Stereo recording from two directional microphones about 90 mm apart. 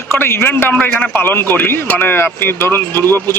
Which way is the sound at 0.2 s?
25° left (ahead or behind).